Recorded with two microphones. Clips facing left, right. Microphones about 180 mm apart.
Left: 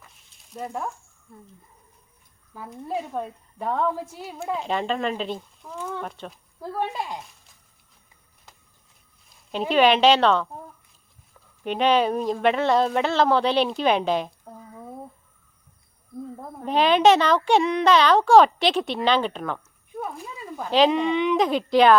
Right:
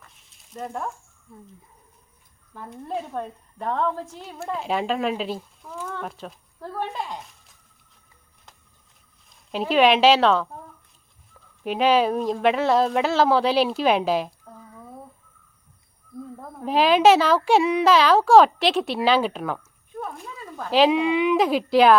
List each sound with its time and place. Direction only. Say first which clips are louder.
0.0 s frying: even; centre (ahead or behind)
2.5 s a child's voice: left 1 dB; 5° left (ahead or behind)
6.6 s speech: left 2 dB; 10° left (ahead or behind)
9.3 s speech: even; centre (ahead or behind)
11.6 s a child's voice: right 1 dB; 5° right (ahead or behind)
14.4 s a sound: left 2 dB; 20° left (ahead or behind)
16.6 s a child's voice: right 1 dB; 5° right (ahead or behind)